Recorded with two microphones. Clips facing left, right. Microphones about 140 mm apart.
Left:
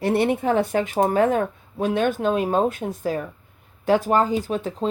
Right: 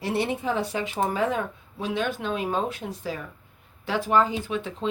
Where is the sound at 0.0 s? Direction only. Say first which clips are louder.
Left 6 dB; 55° left (ahead or behind).